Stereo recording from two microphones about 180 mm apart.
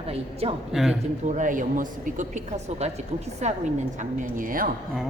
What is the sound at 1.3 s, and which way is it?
A woman's voice, 45° right (ahead or behind).